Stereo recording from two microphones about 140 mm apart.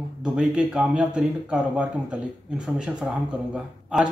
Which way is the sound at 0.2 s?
5° right (ahead or behind).